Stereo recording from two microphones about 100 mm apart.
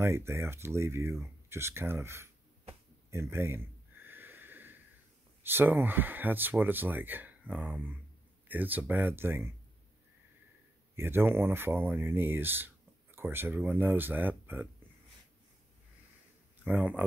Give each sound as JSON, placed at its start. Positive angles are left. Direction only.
{"t": 0.0, "sound": "speech", "side_deg": -25}
{"t": 3.1, "sound": "a sound", "side_deg": -25}
{"t": 5.4, "sound": "speech", "side_deg": -20}
{"t": 11.0, "sound": "speech", "side_deg": -25}
{"t": 16.6, "sound": "speech", "side_deg": -10}